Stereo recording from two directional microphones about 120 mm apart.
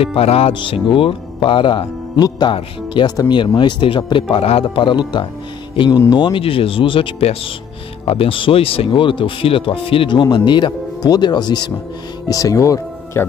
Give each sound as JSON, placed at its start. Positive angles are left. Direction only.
{"t": 0.0, "sound": "speech", "side_deg": 55}